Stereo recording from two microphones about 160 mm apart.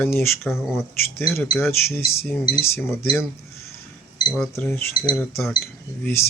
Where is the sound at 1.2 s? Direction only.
5° left (ahead or behind).